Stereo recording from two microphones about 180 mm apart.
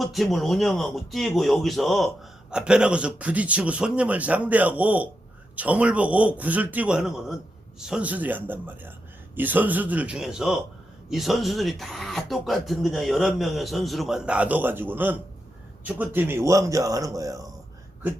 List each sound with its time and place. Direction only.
0.0 s a man's voice: centre (ahead or behind); by 17.4 s 20° right (ahead or behind)